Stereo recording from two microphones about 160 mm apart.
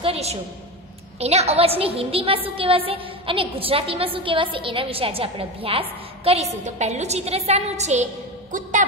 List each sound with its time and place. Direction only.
0.0 s a woman's voice: 40° right (ahead or behind)